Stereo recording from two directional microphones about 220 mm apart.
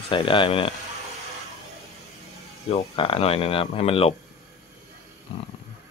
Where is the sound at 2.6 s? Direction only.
25° left (ahead or behind).